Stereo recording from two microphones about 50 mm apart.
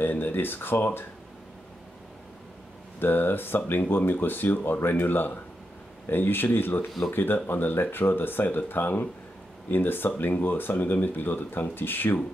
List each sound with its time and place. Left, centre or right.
0.0 s speech: left
3.0 s speech: left